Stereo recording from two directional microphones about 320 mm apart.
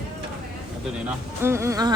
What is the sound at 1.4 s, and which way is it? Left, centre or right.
Speech, centre.